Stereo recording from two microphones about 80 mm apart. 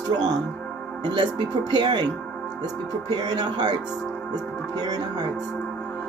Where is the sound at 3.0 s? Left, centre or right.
Right.